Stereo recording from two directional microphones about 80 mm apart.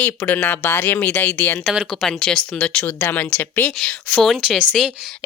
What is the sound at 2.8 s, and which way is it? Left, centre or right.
Speech, left.